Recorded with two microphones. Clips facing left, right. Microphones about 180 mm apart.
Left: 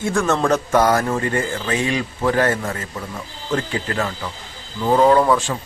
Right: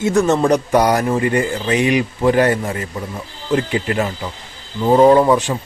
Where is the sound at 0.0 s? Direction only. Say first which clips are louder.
Right 4 dB; 20° right (ahead or behind).